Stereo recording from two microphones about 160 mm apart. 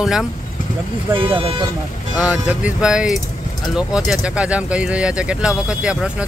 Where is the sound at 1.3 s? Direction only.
35° right (ahead or behind).